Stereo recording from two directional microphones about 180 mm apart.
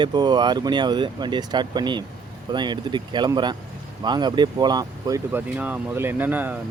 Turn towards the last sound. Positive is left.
turn(degrees=-10)  # may be behind; listen again after turning